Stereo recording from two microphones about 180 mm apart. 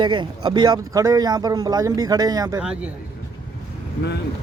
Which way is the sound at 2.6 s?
5° right (ahead or behind).